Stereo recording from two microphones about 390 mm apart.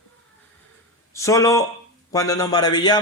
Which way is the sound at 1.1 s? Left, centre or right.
Centre.